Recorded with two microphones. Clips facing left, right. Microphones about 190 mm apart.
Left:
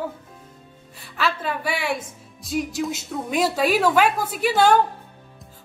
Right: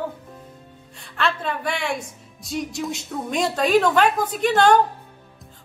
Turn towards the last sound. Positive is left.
turn(degrees=5)  # may be behind; listen again after turning